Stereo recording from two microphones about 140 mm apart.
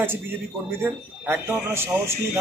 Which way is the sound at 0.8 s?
15° right (ahead or behind).